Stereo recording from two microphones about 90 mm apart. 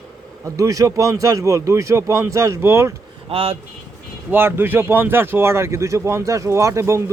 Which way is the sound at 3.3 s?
90° right.